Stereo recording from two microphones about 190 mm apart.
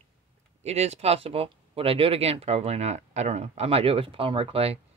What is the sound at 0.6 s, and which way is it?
Speech, 35° right (ahead or behind).